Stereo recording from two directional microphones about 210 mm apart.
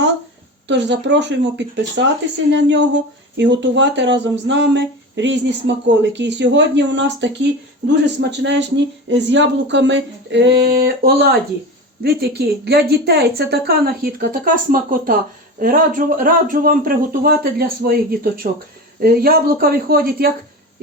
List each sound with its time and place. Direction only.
0.7 s a woman's voice: 55° right (ahead or behind)